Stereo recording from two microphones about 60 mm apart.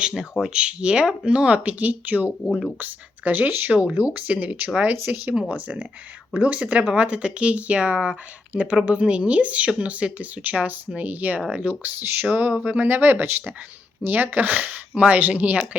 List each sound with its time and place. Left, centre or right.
0.5 s speech: centre
3.7 s speech: centre
3.9 s speech: right
5.3 s speech: centre
11.8 s speech: right